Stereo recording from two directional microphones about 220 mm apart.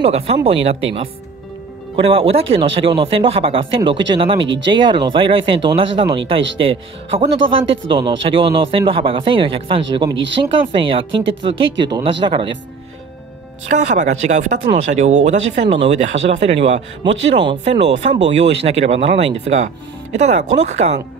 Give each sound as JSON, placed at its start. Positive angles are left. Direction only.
{"t": 0.0, "sound": "speech", "side_deg": -30}
{"t": 13.7, "sound": "speech", "side_deg": -35}